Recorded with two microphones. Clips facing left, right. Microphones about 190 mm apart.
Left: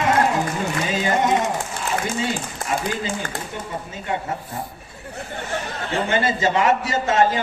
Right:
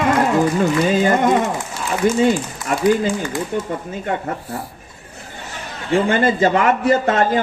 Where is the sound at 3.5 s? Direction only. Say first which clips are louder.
Right 9 dB; 55° right (ahead or behind).